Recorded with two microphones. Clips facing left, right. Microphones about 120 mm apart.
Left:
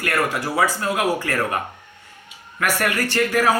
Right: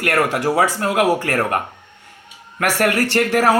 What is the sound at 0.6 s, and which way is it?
Speech, 80° right.